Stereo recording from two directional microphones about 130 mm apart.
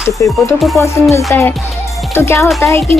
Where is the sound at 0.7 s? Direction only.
25° left (ahead or behind).